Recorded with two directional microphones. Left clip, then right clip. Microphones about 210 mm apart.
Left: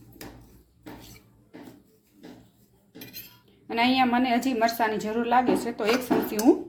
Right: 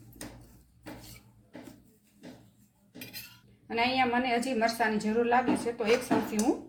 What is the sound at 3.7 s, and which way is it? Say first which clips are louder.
A woman's voice: left 4 dB; 35° left (ahead or behind).